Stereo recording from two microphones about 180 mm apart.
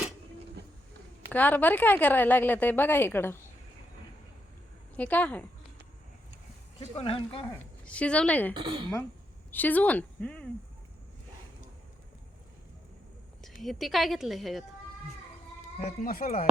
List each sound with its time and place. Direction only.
1.3 s a woman's voice: 10° left (ahead or behind)
4.9 s a woman's voice: 10° left (ahead or behind)
6.7 s speech: 30° left (ahead or behind)
7.5 s a woman's voice: 10° left (ahead or behind)
8.5 s speech: 25° right (ahead or behind)
9.5 s a woman's voice: 10° left (ahead or behind)
13.4 s a woman's voice: centre (ahead or behind)
15.8 s speech: 45° left (ahead or behind)